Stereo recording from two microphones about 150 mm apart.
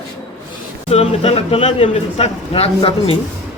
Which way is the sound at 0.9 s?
45° left (ahead or behind).